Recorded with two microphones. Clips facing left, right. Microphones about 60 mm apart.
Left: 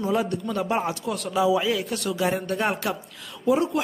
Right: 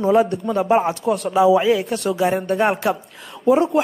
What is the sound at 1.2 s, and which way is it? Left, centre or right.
Speech, right.